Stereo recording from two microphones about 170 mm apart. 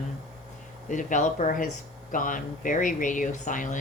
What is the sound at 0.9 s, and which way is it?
Speech, 50° left (ahead or behind).